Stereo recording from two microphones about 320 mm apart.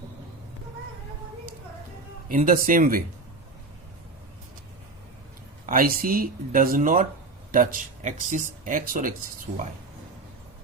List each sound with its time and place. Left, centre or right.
2.3 s speech: right
5.6 s speech: right